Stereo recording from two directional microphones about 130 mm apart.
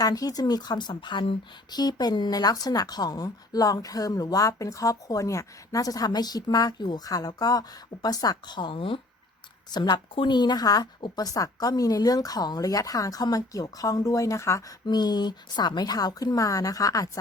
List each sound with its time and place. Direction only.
0.0 s a woman's voice: 30° left (ahead or behind)